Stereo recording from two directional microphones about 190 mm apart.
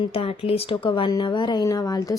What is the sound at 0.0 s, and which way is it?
Speech, 30° left (ahead or behind).